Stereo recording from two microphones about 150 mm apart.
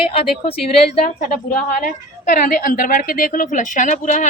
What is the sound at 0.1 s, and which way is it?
Speech, 40° left (ahead or behind).